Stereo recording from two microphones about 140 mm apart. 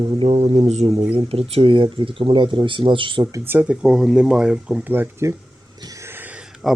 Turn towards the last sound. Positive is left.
turn(degrees=-10)  # may be behind; listen again after turning